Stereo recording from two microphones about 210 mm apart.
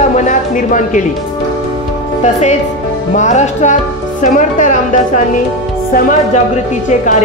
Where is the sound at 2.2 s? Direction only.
30° left (ahead or behind).